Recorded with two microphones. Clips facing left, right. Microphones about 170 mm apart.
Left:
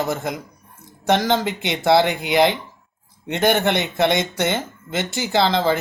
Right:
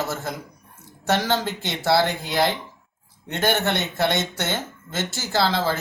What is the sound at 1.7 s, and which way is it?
A man's voice, 20° left (ahead or behind).